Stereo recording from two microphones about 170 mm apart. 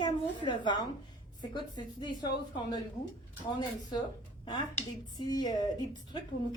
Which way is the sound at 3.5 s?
25° left (ahead or behind).